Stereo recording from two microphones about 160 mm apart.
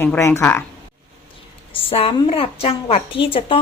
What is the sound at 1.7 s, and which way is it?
Speech, 35° left (ahead or behind).